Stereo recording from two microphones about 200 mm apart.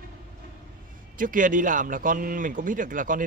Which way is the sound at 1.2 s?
40° right (ahead or behind).